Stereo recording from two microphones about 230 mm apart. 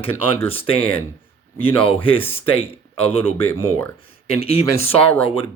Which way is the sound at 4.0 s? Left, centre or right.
Left.